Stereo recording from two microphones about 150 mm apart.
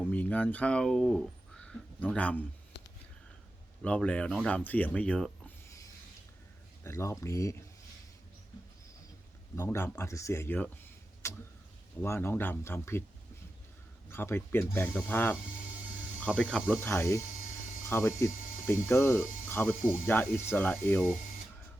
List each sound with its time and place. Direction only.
0.0 s speech: 10° left (ahead or behind)
3.8 s speech: 10° left (ahead or behind)
6.8 s speech: 20° left (ahead or behind)
9.6 s speech: 15° left (ahead or behind)
14.1 s speech: 15° left (ahead or behind)
16.4 s speech: 5° left (ahead or behind)
16.7 s speech: 15° left (ahead or behind)